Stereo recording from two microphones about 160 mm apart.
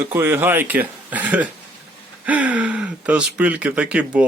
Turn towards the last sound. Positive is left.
turn(degrees=-10)  # may be behind; listen again after turning